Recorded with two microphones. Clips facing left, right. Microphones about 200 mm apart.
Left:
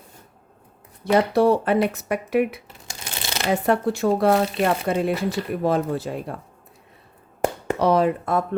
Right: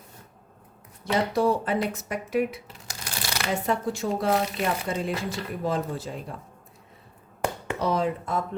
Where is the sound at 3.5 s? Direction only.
65° left (ahead or behind).